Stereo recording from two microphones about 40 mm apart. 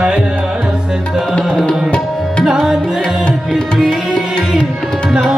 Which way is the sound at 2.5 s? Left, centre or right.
Centre.